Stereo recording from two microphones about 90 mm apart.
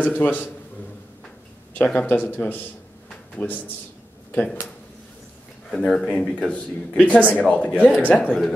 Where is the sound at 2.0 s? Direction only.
20° left (ahead or behind).